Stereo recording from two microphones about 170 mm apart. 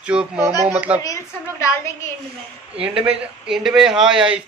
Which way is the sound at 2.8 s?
35° right (ahead or behind).